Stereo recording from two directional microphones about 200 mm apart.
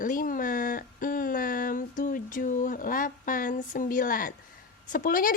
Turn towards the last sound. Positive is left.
turn(degrees=45)  # may be behind; listen again after turning